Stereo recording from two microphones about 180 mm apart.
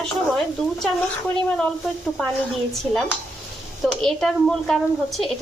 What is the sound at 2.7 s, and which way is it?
A woman's voice, centre (ahead or behind).